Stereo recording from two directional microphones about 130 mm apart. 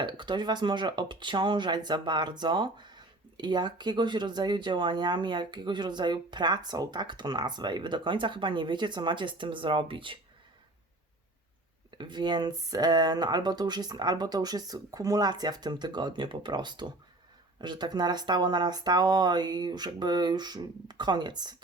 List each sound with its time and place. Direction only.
0.0 s speech: 35° right (ahead or behind)
11.9 s speech: 35° right (ahead or behind)